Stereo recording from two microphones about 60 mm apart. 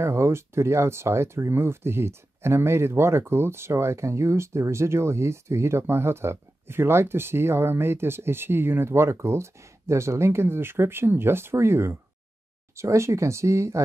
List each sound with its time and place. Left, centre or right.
0.0 s speech: right
12.7 s speech: right